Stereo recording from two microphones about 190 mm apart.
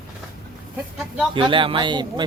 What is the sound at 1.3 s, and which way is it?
Speech, 25° right (ahead or behind).